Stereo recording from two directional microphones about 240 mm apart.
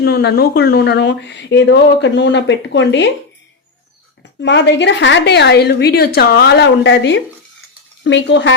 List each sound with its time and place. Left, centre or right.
0.0 s speech: left
4.4 s speech: left